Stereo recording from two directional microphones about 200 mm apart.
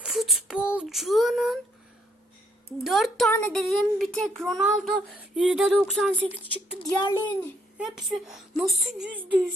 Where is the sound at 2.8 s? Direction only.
Centre (ahead or behind).